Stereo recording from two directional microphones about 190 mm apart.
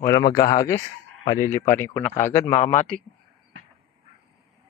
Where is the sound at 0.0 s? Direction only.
20° left (ahead or behind).